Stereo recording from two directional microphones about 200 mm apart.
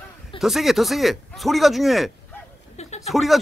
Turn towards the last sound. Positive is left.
turn(degrees=0)  # may be behind; listen again after turning